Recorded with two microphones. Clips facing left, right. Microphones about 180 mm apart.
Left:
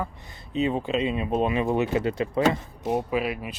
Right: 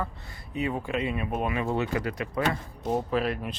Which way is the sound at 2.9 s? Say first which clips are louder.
Left 1 dB; 10° left (ahead or behind).